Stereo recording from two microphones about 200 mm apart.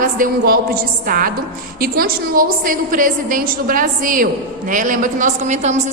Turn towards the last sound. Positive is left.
turn(degrees=-35)  # may be behind; listen again after turning